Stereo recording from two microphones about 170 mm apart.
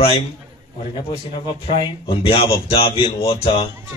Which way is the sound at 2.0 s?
30° left (ahead or behind).